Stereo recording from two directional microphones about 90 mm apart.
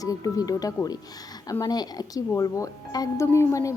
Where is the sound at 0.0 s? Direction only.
40° left (ahead or behind).